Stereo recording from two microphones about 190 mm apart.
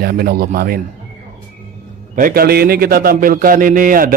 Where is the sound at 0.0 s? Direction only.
55° right (ahead or behind).